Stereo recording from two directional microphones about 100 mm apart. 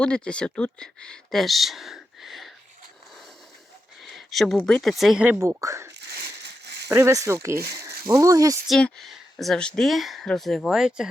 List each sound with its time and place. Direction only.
0.0 s speech: 10° left (ahead or behind)
4.0 s a sound: centre (ahead or behind)
4.5 s speech: 10° left (ahead or behind)
5.4 s speech: 30° right (ahead or behind)
8.8 s speech: centre (ahead or behind)